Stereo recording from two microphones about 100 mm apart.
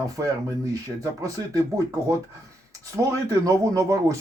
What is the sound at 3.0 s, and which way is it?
Speech, 35° right (ahead or behind).